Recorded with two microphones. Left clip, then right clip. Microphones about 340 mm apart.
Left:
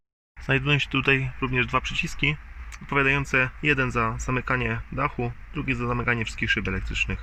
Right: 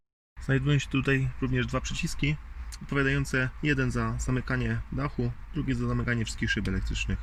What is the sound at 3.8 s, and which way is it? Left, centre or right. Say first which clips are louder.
Speech: left 7 dB; centre.